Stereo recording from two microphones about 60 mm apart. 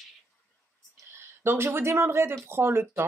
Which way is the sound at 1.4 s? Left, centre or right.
Right.